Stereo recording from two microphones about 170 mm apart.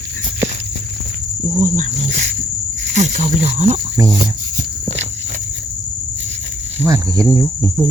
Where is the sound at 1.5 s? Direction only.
45° right (ahead or behind).